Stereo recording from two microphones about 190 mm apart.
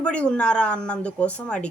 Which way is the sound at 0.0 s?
5° left (ahead or behind).